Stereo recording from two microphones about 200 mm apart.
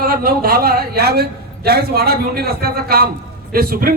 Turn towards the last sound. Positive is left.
turn(degrees=-50)  # may be behind; listen again after turning